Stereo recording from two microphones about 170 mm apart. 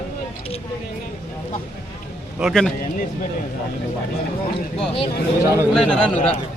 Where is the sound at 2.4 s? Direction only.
Centre (ahead or behind).